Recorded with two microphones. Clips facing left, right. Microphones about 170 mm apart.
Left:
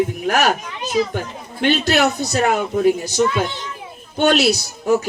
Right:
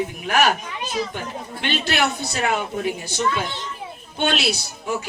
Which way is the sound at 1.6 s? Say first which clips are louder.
Left 7 dB; 40° left (ahead or behind).